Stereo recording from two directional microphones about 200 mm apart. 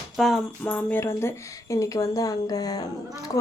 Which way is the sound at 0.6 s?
10° left (ahead or behind).